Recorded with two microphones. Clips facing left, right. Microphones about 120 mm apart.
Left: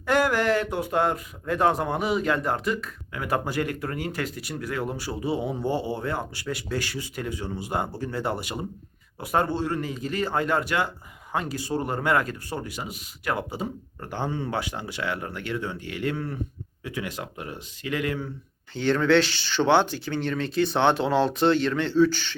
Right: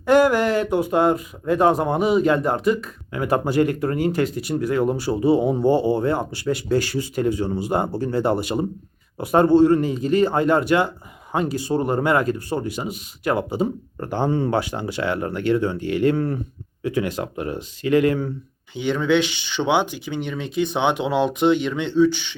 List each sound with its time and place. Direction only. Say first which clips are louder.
0.0 s speech: right 7 dB; 20° right (ahead or behind)
3.1 s speech: right 6 dB; 30° right (ahead or behind)
14.0 s speech: right 8 dB; 35° right (ahead or behind)
18.7 s speech: right 1 dB; 15° right (ahead or behind)